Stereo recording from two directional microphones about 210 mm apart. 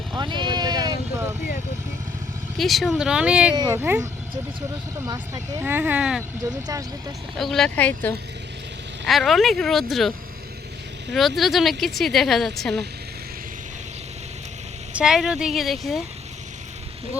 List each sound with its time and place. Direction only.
0.1 s vehicle: 20° right (ahead or behind)
2.6 s speech: centre (ahead or behind)
3.5 s speech: 15° right (ahead or behind)
6.4 s speech: 15° right (ahead or behind)
7.3 s speech: centre (ahead or behind)
11.1 s speech: centre (ahead or behind)
14.9 s speech: 5° right (ahead or behind)